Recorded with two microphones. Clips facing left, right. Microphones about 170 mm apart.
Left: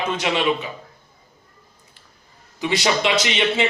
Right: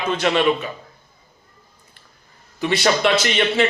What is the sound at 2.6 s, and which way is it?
Speech, 15° left (ahead or behind).